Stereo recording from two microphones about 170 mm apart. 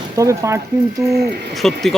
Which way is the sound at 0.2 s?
15° right (ahead or behind).